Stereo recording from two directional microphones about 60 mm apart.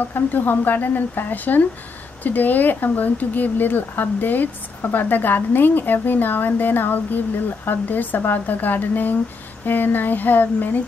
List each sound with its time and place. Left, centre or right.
0.1 s speech: left